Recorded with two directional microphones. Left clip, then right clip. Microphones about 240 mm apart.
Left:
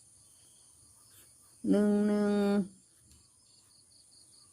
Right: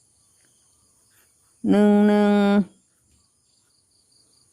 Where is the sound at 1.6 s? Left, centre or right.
Right.